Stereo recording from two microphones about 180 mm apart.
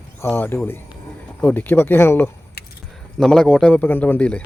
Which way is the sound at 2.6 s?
65° left (ahead or behind).